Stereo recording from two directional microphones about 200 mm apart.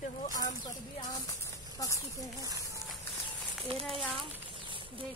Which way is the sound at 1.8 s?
15° left (ahead or behind).